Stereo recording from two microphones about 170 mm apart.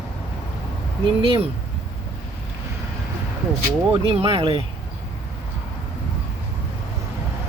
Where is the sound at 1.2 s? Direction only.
35° right (ahead or behind).